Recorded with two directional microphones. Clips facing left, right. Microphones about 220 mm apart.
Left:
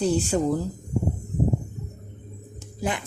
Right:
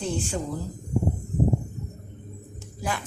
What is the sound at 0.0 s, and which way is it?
Speech, 40° left (ahead or behind).